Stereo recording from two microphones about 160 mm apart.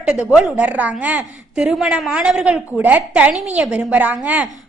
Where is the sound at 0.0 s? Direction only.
5° right (ahead or behind).